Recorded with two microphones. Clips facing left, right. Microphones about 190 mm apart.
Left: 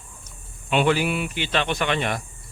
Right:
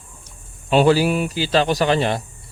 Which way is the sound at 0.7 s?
35° right (ahead or behind).